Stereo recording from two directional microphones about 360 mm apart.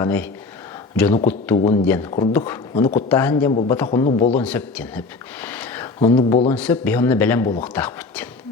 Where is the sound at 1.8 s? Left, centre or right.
Centre.